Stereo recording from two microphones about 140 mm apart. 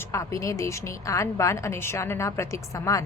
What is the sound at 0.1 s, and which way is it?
A woman's voice, 20° left (ahead or behind).